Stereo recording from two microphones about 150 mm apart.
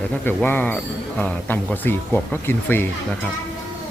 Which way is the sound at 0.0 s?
10° left (ahead or behind).